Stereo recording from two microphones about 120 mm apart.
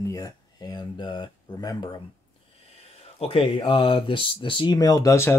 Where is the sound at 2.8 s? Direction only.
55° left (ahead or behind).